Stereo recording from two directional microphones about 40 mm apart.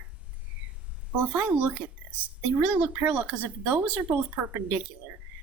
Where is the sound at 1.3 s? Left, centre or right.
Right.